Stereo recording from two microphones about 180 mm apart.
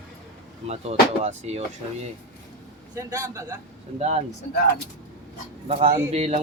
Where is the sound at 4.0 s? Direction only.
35° right (ahead or behind).